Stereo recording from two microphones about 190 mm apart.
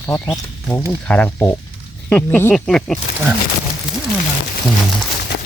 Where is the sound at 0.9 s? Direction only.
5° left (ahead or behind).